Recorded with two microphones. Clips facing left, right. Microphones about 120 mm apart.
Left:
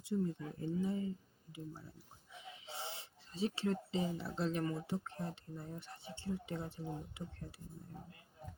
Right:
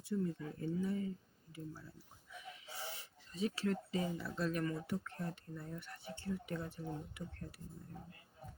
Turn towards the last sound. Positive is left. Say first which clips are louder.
# even
turn(degrees=25)  # may be behind; listen again after turning